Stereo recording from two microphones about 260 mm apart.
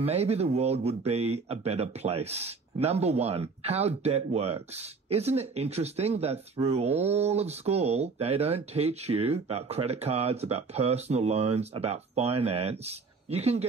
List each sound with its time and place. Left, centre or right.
0.0 s speech: right